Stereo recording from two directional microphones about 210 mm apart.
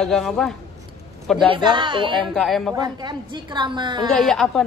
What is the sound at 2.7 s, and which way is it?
A woman's voice, 20° right (ahead or behind).